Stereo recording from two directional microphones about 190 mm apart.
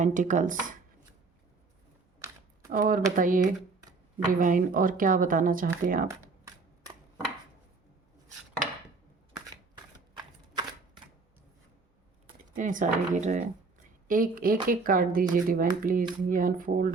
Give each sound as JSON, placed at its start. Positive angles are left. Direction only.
{"t": 0.0, "sound": "speech", "side_deg": -40}
{"t": 2.6, "sound": "speech", "side_deg": -45}
{"t": 6.1, "sound": "a sound", "side_deg": -20}
{"t": 10.2, "sound": "typewriter", "side_deg": -20}
{"t": 12.5, "sound": "speech", "side_deg": -45}